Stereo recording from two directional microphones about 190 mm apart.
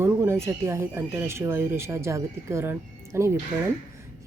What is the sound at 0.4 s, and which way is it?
Speech, 15° right (ahead or behind).